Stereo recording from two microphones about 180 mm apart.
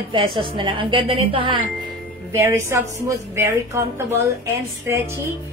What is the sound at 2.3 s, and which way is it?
A woman's voice, 15° right (ahead or behind).